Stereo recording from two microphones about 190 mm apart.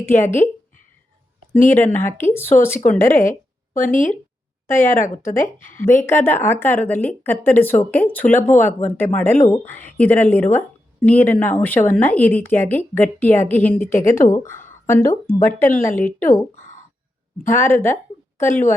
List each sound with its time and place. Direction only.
0.0 s a woman's voice: 15° left (ahead or behind)
1.5 s a woman's voice: 10° left (ahead or behind)
3.8 s speech: 45° left (ahead or behind)
4.6 s speech: 15° left (ahead or behind)
4.9 s speech: 40° left (ahead or behind)
5.7 s a woman's voice: 10° left (ahead or behind)
17.4 s a woman's voice: 15° left (ahead or behind)